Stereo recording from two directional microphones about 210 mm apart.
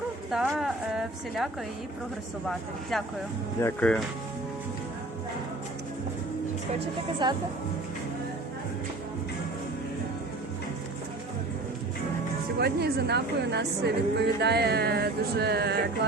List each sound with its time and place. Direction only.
0.3 s a woman's voice: centre (ahead or behind)
2.9 s a woman's voice: centre (ahead or behind)
7.2 s speech: 20° right (ahead or behind)
12.5 s a woman's voice: 50° right (ahead or behind)